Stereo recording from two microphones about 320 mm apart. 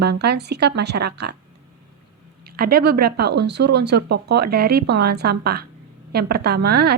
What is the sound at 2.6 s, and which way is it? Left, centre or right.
A woman's voice, right.